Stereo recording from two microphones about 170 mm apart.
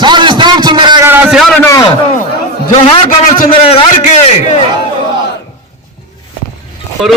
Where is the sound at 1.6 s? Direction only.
20° left (ahead or behind).